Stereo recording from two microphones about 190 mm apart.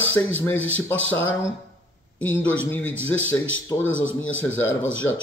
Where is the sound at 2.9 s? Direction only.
90° left.